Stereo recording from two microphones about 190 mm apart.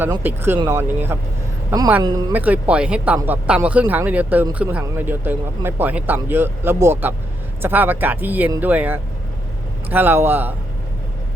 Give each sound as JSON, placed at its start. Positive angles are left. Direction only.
{"t": 0.2, "sound": "speech", "side_deg": -10}
{"t": 2.3, "sound": "speech", "side_deg": -10}